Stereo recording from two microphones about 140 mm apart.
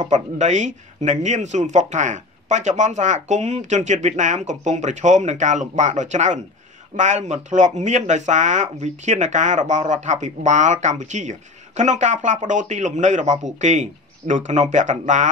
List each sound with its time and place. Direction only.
0.0 s speech: 60° right (ahead or behind)